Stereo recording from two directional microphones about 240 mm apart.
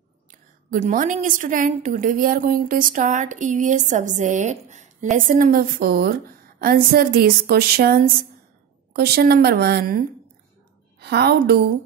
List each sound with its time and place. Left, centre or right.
0.3 s a woman's voice: right